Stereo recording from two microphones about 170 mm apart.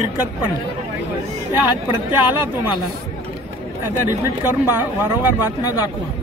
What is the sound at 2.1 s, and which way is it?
Speech, 10° right (ahead or behind).